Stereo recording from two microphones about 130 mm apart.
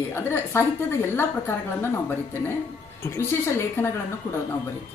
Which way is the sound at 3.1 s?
20° left (ahead or behind).